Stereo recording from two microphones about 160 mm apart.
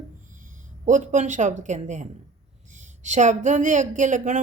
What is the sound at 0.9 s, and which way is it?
Speech, 50° right (ahead or behind).